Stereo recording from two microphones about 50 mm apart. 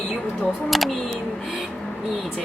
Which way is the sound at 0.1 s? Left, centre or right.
Centre.